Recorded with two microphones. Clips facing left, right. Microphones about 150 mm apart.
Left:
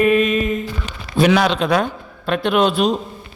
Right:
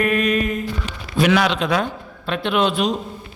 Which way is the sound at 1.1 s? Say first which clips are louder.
Left 2 dB; 30° left (ahead or behind).